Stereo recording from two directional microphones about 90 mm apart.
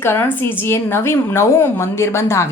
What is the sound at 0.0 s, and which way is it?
Speech, 25° left (ahead or behind).